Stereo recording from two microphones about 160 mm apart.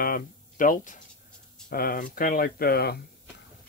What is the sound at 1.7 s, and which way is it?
Speech, 65° left (ahead or behind).